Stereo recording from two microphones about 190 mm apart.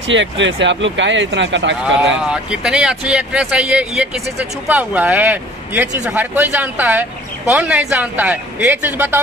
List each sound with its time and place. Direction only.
0.1 s speech: 75° right (ahead or behind)
2.2 s speech: 5° right (ahead or behind)